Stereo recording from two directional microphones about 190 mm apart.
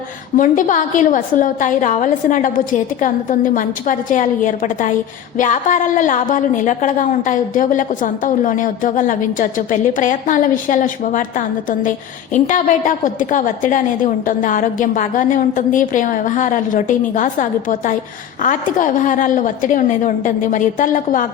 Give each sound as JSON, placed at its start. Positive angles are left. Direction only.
{"t": 0.3, "sound": "a woman's voice", "side_deg": 45}